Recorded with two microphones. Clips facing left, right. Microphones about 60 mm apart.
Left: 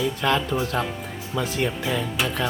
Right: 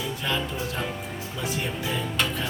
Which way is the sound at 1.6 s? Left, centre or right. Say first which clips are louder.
Left 6 dB; left.